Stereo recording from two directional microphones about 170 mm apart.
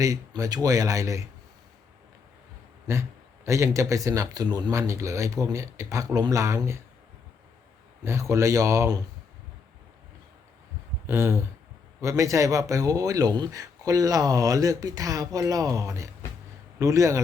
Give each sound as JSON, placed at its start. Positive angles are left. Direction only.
{"t": 0.0, "sound": "speech", "side_deg": -20}
{"t": 3.4, "sound": "speech", "side_deg": -15}
{"t": 8.0, "sound": "speech", "side_deg": -15}
{"t": 11.0, "sound": "speech", "side_deg": -15}